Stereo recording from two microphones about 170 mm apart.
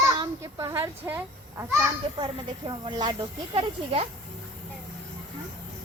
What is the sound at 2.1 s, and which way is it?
Speech, 30° right (ahead or behind).